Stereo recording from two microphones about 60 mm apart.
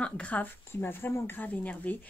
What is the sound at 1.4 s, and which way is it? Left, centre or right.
Speech, left.